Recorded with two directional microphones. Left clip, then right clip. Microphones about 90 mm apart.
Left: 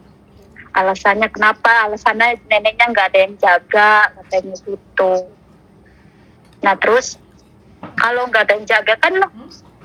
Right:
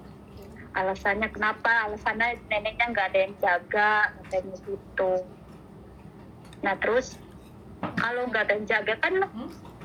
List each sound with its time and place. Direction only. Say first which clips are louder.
0.5 s a woman's voice: left 13 dB; 45° left (ahead or behind)
6.6 s a woman's voice: left 12 dB; 40° left (ahead or behind)